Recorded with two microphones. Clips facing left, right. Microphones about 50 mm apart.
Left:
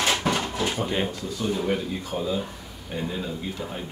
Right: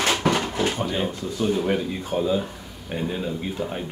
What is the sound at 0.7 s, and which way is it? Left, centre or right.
Speech, left.